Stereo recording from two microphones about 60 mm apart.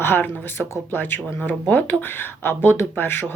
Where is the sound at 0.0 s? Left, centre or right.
Left.